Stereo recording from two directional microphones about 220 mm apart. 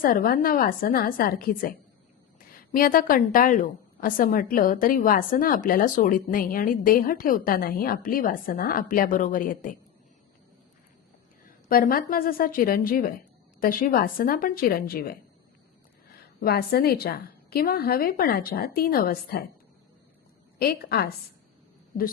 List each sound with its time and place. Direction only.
0.0 s a woman's voice: 40° left (ahead or behind)
2.7 s a woman's voice: 40° left (ahead or behind)
11.7 s a woman's voice: 40° left (ahead or behind)
16.4 s a woman's voice: 45° left (ahead or behind)
20.6 s a woman's voice: 45° left (ahead or behind)